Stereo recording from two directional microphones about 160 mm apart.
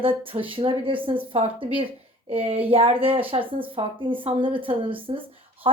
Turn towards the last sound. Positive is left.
turn(degrees=-35)  # may be behind; listen again after turning